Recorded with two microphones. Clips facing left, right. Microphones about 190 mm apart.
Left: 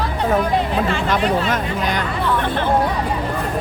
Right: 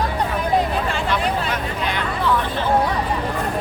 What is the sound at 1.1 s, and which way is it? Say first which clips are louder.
Speech: left 4 dB; 45° left (ahead or behind).